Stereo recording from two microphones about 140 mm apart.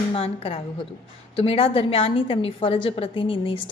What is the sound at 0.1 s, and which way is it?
A woman's voice, 40° left (ahead or behind).